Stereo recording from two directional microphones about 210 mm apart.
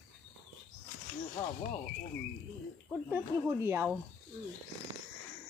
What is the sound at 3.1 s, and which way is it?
Speech, 10° right (ahead or behind).